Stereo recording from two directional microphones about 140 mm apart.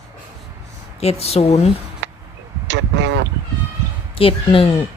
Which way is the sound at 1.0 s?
45° left (ahead or behind).